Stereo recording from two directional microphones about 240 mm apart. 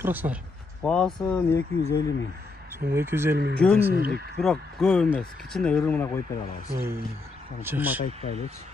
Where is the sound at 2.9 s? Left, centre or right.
Centre.